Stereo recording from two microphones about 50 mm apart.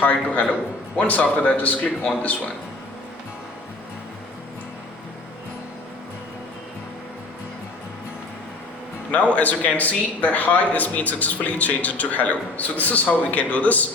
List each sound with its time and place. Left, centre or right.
0.0 s speech: left
9.1 s a man's voice: left